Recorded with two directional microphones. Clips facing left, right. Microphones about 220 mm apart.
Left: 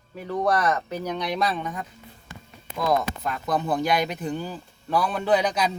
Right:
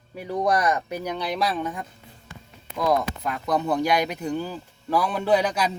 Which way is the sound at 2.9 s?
10° right (ahead or behind).